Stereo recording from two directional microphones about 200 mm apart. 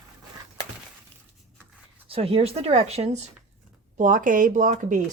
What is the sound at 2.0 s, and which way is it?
Speech, 25° right (ahead or behind).